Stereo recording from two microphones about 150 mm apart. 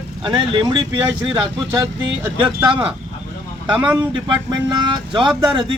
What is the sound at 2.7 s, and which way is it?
Speech, 35° right (ahead or behind).